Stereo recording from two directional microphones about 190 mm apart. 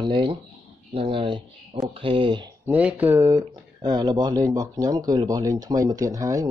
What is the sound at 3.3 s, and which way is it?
Speech, 20° right (ahead or behind).